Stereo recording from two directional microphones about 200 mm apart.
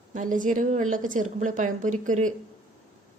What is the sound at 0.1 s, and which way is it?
Speech, 40° right (ahead or behind).